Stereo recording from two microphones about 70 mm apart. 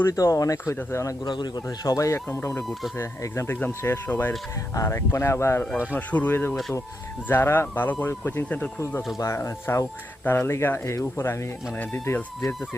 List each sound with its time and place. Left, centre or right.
0.1 s speech: left
1.2 s speech: left
3.4 s speech: left
4.7 s speech: left
5.9 s speech: left
8.4 s speech: centre
9.1 s speech: left
10.2 s speech: left